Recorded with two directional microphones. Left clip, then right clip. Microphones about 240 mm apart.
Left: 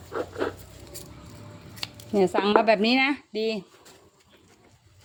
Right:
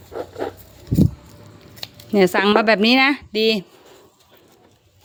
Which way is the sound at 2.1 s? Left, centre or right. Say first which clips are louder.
Right 6 dB; right.